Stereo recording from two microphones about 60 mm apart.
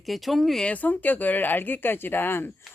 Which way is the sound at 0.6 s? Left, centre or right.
Left.